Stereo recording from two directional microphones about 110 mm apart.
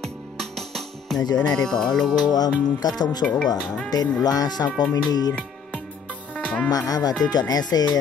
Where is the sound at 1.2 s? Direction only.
40° left (ahead or behind).